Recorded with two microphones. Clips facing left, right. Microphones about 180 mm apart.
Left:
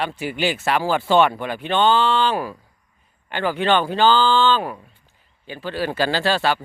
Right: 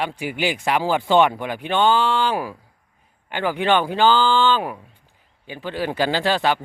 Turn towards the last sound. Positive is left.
turn(degrees=-15)  # may be behind; listen again after turning